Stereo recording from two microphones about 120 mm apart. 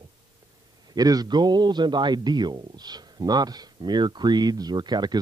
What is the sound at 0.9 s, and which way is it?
A man's voice, 30° right (ahead or behind).